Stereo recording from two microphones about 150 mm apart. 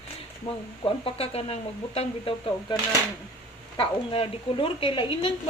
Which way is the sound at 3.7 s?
35° left (ahead or behind).